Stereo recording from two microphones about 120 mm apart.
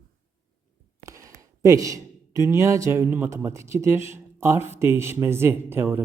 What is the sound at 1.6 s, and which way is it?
A man's voice, 25° right (ahead or behind).